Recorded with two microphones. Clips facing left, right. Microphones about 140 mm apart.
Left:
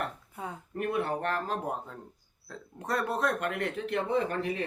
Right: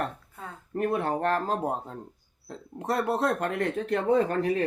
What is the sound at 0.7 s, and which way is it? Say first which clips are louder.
Speech: right 4 dB; 40° right (ahead or behind).